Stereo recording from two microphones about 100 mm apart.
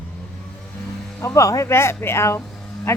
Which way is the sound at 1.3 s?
30° left (ahead or behind).